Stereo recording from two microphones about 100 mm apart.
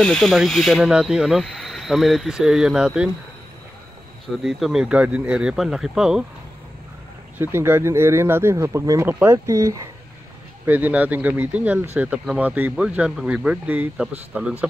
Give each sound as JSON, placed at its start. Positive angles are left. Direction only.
{"t": 0.0, "sound": "speech", "side_deg": 10}
{"t": 4.4, "sound": "speech", "side_deg": 0}
{"t": 7.3, "sound": "speech", "side_deg": -20}
{"t": 9.0, "sound": "speech", "side_deg": -20}
{"t": 9.5, "sound": "speech", "side_deg": -30}
{"t": 10.7, "sound": "speech", "side_deg": -15}